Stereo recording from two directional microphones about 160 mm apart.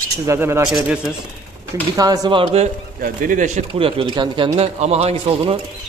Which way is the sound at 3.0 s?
60° right (ahead or behind).